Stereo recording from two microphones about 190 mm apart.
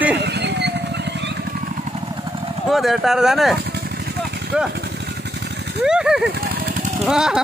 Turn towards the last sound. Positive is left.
turn(degrees=-5)  # may be behind; listen again after turning